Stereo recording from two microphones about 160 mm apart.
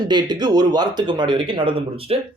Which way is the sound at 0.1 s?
25° right (ahead or behind).